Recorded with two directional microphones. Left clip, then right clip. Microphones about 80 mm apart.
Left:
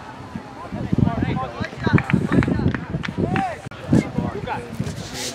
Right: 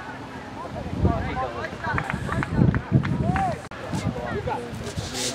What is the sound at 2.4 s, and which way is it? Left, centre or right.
Run, left.